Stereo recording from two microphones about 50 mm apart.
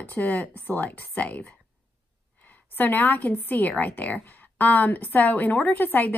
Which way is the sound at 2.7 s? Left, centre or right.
Left.